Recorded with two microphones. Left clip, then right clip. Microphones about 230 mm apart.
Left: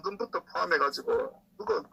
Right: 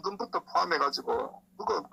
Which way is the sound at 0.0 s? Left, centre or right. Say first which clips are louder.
Even; right.